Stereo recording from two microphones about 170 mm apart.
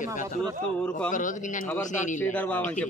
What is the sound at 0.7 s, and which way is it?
Speech, 5° left (ahead or behind).